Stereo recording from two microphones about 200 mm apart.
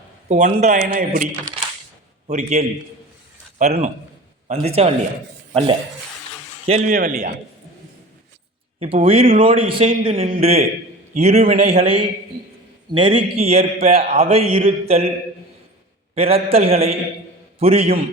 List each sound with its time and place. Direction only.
0.3 s a man's voice: 35° right (ahead or behind)
4.4 s a man's voice: 35° right (ahead or behind)
6.7 s a man's voice: 40° right (ahead or behind)
8.8 s a man's voice: 30° right (ahead or behind)
16.1 s a man's voice: 30° right (ahead or behind)